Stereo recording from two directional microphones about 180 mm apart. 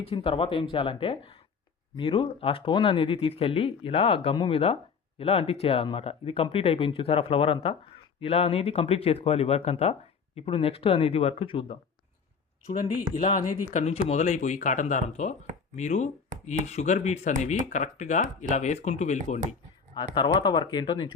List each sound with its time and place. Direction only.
0.0 s speech: 30° left (ahead or behind)
13.7 s speech: 40° left (ahead or behind)
20.1 s speech: 25° left (ahead or behind)